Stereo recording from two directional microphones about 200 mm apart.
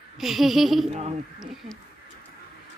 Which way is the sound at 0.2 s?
Centre (ahead or behind).